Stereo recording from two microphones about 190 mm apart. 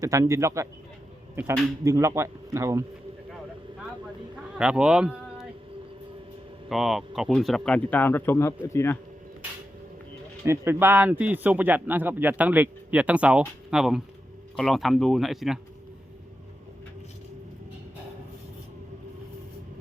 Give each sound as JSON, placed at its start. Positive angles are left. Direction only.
{"t": 0.0, "sound": "a man's voice", "side_deg": -15}
{"t": 1.8, "sound": "a man's voice", "side_deg": -15}
{"t": 4.5, "sound": "speech", "side_deg": -5}
{"t": 6.7, "sound": "speech", "side_deg": 0}
{"t": 10.4, "sound": "a man's voice", "side_deg": -15}